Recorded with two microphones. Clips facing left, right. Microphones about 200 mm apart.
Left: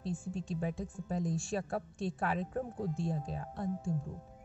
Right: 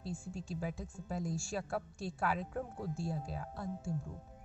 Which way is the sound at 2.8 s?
20° left (ahead or behind).